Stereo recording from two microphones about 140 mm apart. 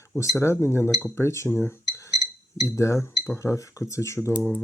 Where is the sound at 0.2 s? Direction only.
20° left (ahead or behind).